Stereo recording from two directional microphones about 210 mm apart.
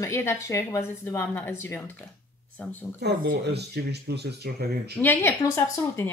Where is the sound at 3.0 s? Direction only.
50° right (ahead or behind).